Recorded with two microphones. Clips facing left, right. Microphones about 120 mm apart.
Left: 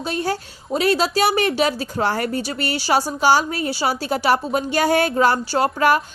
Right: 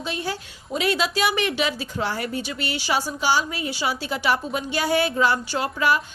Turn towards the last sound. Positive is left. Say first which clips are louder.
# left 5 dB
turn(degrees=50)  # may be behind; listen again after turning